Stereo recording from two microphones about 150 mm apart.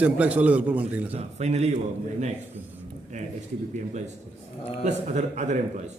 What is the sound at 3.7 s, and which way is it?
A man's voice, 55° right (ahead or behind).